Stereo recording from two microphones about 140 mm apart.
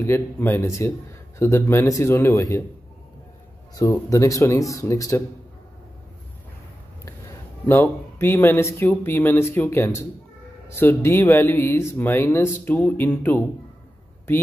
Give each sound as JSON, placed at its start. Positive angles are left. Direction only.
{"t": 0.0, "sound": "speech", "side_deg": 15}
{"t": 3.7, "sound": "speech", "side_deg": 20}
{"t": 7.6, "sound": "speech", "side_deg": 15}